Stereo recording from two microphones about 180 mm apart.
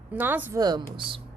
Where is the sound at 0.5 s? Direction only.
25° right (ahead or behind).